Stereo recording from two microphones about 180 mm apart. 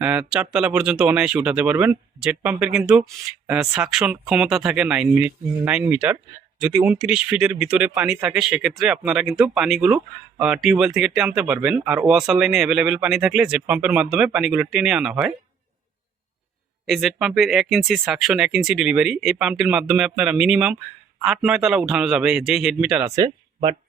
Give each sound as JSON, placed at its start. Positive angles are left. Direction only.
{"t": 0.0, "sound": "speech", "side_deg": -5}
{"t": 16.8, "sound": "speech", "side_deg": 0}
{"t": 23.0, "sound": "speech", "side_deg": -15}